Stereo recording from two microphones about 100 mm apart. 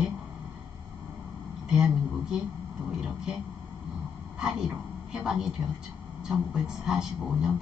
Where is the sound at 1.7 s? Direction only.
5° right (ahead or behind).